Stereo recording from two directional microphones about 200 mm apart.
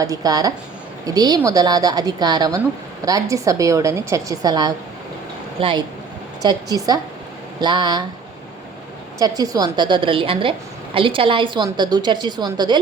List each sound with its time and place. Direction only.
0.0 s a woman's voice: 15° right (ahead or behind)
9.1 s a woman's voice: 20° right (ahead or behind)